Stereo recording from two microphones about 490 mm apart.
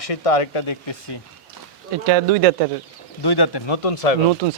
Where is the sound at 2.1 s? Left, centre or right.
Right.